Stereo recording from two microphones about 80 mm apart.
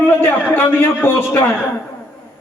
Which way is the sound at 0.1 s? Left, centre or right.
Left.